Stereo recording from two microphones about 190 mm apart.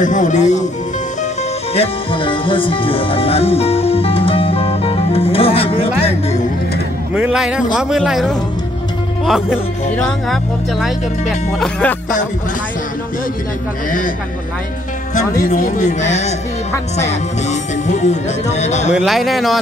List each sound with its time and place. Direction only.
0.0 s speech: 40° left (ahead or behind)
1.8 s music: 25° left (ahead or behind)
7.2 s speech: 5° right (ahead or behind)
15.1 s speech: 45° left (ahead or behind)
18.9 s speech: 5° right (ahead or behind)